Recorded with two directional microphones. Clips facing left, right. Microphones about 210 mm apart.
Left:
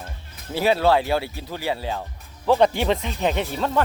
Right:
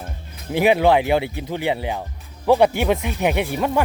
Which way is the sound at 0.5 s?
15° right (ahead or behind).